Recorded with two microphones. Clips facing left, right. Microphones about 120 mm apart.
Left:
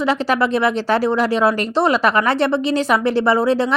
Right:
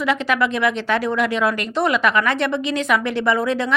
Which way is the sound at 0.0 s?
30° left (ahead or behind).